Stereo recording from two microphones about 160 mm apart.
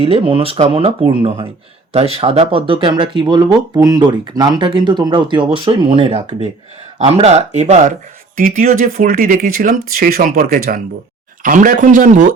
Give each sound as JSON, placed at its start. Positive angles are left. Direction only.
{"t": 0.0, "sound": "speech", "side_deg": -35}
{"t": 8.4, "sound": "speech", "side_deg": -60}